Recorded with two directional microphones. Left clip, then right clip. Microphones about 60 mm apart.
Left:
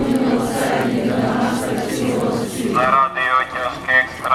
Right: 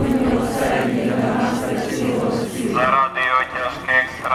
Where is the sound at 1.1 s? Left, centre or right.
Left.